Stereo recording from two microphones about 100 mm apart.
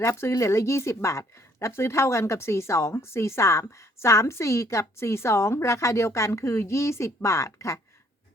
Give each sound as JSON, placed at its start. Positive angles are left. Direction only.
{"t": 0.0, "sound": "speech", "side_deg": 25}